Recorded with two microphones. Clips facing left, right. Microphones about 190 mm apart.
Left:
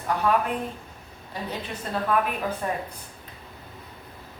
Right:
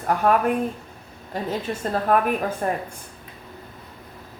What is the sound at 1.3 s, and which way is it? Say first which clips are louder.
A woman's voice: right 6 dB; 45° right (ahead or behind).